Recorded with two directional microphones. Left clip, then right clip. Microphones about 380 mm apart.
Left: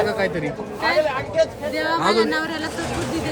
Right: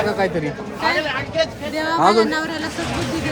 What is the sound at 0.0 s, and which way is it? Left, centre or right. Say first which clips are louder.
A child's voice: right 1 dB; centre.